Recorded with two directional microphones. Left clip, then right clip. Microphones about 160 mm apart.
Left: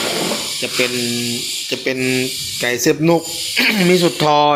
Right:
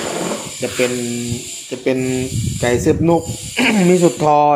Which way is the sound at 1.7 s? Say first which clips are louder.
Right 1 dB; 15° right (ahead or behind).